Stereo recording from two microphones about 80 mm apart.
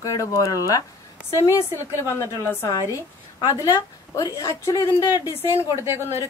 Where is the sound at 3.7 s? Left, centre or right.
Left.